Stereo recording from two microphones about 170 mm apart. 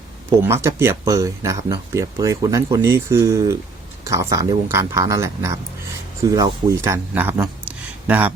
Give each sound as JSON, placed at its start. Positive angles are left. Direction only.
{"t": 0.3, "sound": "speech", "side_deg": -15}